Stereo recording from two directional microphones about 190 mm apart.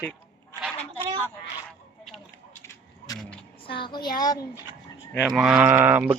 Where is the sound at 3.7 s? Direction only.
25° left (ahead or behind).